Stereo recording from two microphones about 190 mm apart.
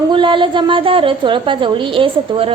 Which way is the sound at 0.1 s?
25° right (ahead or behind).